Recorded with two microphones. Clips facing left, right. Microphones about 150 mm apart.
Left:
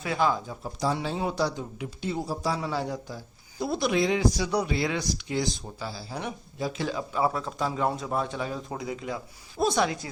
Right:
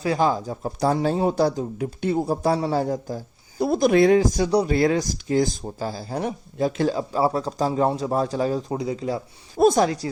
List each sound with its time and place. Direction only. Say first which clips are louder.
0.0 s speech: right 5 dB; 35° right (ahead or behind); by 2.6 s 50° right (ahead or behind)
2.6 s speech: right 7 dB; 40° right (ahead or behind)
9.6 s speech: right 8 dB; 45° right (ahead or behind)